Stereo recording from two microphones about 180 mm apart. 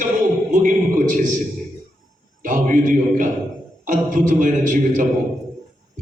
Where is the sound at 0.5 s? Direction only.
45° right (ahead or behind).